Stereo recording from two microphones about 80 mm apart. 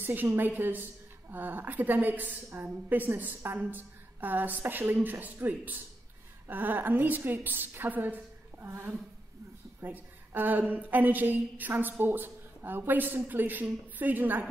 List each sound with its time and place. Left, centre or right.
0.0 s a woman's voice: right